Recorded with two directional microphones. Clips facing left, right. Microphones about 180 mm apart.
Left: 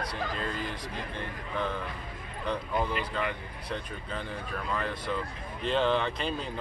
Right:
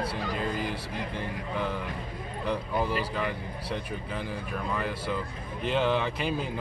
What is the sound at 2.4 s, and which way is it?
A man's voice, 10° right (ahead or behind).